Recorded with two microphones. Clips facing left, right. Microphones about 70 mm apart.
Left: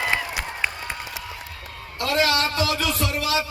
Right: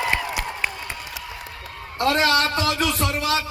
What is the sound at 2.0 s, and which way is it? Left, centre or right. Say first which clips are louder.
Speech: right 2 dB; right.